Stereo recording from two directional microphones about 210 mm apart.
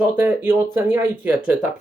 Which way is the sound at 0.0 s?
10° right (ahead or behind).